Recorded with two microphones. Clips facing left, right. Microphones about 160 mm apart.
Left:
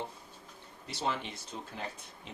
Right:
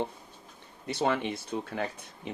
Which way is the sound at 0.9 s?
60° right (ahead or behind).